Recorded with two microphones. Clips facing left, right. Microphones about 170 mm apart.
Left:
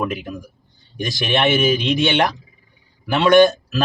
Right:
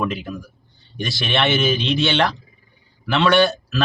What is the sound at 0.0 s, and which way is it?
A man's voice, 15° left (ahead or behind).